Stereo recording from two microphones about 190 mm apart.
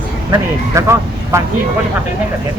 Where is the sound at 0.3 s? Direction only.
15° right (ahead or behind).